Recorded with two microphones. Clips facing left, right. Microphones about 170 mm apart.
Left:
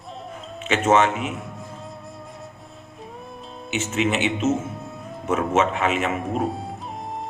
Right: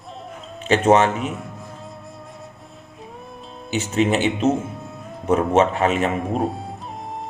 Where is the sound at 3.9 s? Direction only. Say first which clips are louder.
Right 4 dB; 35° right (ahead or behind).